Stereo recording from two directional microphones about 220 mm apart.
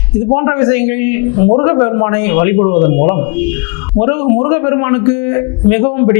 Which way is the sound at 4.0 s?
25° left (ahead or behind).